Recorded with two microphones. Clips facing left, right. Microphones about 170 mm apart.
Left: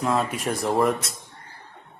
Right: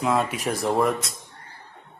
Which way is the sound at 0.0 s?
Centre (ahead or behind).